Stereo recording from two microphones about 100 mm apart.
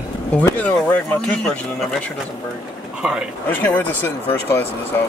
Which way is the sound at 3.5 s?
15° left (ahead or behind).